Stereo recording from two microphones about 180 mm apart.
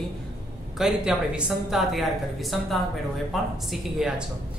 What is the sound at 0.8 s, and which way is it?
A woman's voice, 5° right (ahead or behind).